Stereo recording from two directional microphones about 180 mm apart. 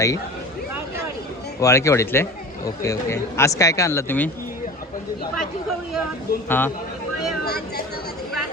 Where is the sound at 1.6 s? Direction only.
15° left (ahead or behind).